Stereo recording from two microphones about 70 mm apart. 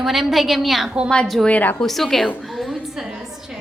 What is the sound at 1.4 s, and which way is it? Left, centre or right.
Speech, left.